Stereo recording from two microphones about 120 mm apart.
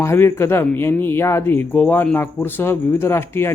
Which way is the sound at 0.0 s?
25° left (ahead or behind).